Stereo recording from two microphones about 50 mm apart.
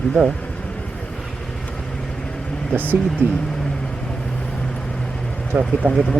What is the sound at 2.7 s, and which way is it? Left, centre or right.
Speech, right.